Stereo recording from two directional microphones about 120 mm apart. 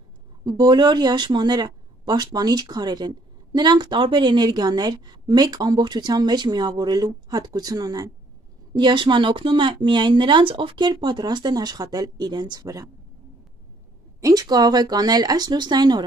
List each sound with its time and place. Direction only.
0.5 s speech: 40° right (ahead or behind)
8.7 s speech: 40° right (ahead or behind)
14.2 s speech: 30° right (ahead or behind)